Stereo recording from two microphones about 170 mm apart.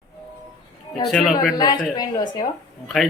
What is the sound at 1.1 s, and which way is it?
Speech, centre (ahead or behind).